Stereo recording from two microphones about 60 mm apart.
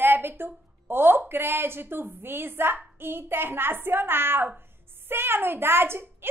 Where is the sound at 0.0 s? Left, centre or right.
Right.